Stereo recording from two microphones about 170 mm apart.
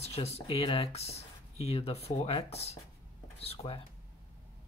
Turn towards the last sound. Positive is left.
turn(degrees=30)  # may be behind; listen again after turning